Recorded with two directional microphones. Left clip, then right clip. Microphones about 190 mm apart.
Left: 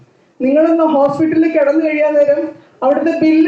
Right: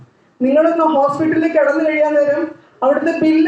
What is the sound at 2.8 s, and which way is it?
Speech, 15° left (ahead or behind).